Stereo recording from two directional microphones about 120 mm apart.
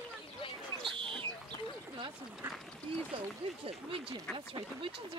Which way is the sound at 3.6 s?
50° right (ahead or behind).